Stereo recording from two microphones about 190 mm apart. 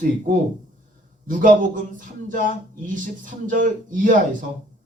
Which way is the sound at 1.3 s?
45° right (ahead or behind).